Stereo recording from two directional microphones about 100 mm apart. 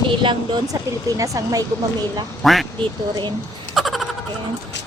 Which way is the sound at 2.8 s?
50° right (ahead or behind).